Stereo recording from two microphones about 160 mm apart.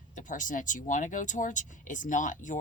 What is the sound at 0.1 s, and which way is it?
Speech, 50° left (ahead or behind).